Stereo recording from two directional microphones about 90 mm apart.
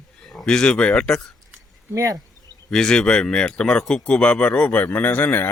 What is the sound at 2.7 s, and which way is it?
Speech, 5° left (ahead or behind).